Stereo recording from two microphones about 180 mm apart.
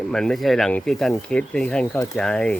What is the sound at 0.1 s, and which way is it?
Speech, 5° left (ahead or behind).